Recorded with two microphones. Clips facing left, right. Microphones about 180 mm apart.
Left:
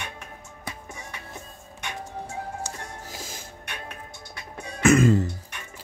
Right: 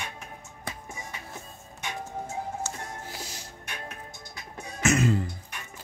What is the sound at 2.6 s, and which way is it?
Music, 15° left (ahead or behind).